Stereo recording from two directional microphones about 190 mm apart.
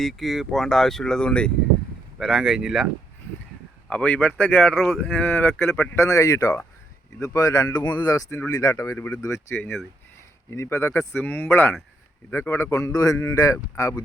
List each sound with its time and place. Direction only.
0.0 s speech: centre (ahead or behind)
3.8 s speech: 5° left (ahead or behind)